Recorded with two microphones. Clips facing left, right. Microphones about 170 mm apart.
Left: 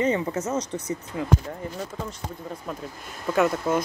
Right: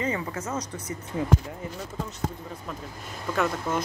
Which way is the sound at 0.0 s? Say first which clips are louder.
Left 6 dB; 25° left (ahead or behind).